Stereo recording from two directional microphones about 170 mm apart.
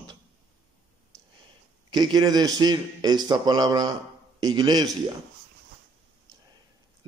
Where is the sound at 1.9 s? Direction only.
25° right (ahead or behind).